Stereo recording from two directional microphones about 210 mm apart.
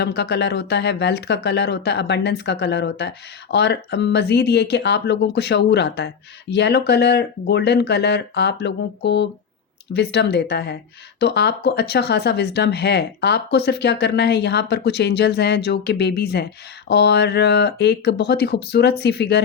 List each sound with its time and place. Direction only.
0.0 s speech: 50° left (ahead or behind)